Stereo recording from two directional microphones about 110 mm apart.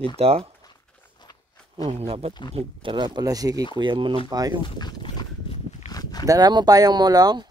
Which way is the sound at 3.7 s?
50° right (ahead or behind).